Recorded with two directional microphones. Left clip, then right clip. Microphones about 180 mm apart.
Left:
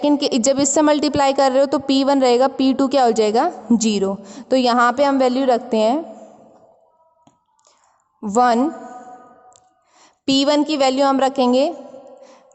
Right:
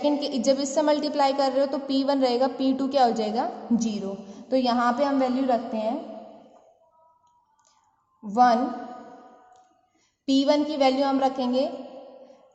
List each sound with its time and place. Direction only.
0.0 s a woman's voice: 55° left (ahead or behind)
8.2 s a woman's voice: 65° left (ahead or behind)
10.0 s a woman's voice: 60° left (ahead or behind)